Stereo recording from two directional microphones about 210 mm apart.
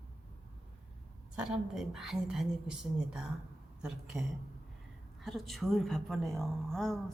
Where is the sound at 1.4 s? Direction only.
Centre (ahead or behind).